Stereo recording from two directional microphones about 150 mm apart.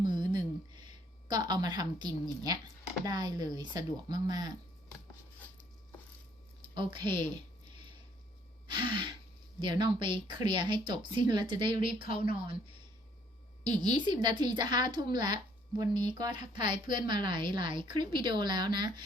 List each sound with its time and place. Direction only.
0.0 s a sound: 30° right (ahead or behind)
3.0 s a woman's voice: 25° right (ahead or behind)
6.6 s speech: 35° right (ahead or behind)
8.6 s gasp: 30° right (ahead or behind)
9.6 s speech: 30° right (ahead or behind)
13.7 s a woman's voice: 30° right (ahead or behind)